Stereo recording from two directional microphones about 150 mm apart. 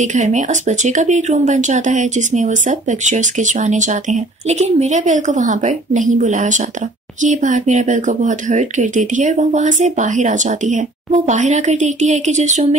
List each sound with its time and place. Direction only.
0.0 s speech: 55° right (ahead or behind)